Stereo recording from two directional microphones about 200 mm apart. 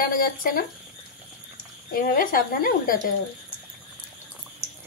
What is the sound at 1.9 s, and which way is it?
Speech, 45° left (ahead or behind).